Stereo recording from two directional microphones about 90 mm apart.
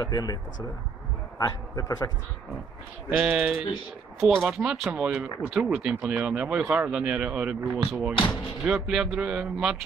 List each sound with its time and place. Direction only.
0.0 s a man's voice: 45° left (ahead or behind)
1.4 s a man's voice: 45° left (ahead or behind)
3.2 s speech: 15° right (ahead or behind)